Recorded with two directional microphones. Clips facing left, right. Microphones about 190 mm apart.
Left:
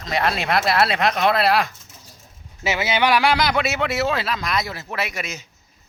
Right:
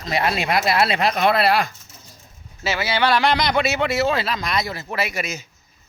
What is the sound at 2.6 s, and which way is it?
Speech, 20° left (ahead or behind).